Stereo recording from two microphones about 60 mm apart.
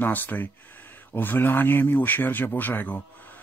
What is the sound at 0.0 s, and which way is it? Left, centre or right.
Speech, left.